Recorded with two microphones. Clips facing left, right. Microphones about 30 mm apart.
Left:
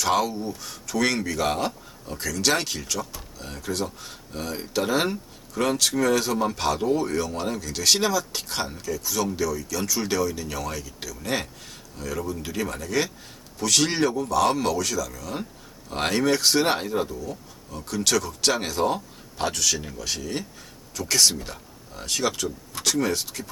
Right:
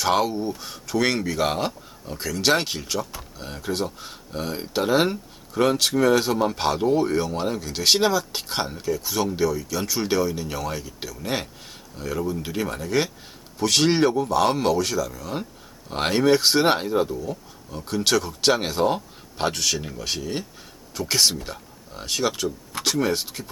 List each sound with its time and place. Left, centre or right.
0.0 s speech: right
17.2 s speech: right